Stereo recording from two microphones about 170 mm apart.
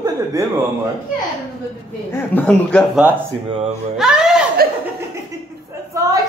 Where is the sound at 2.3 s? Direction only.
10° left (ahead or behind).